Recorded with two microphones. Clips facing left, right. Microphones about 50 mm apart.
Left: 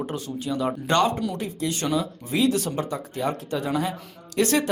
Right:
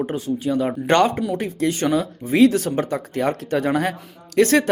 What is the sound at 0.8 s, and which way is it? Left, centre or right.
Speech, right.